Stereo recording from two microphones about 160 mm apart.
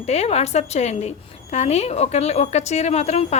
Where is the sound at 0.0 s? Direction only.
40° left (ahead or behind).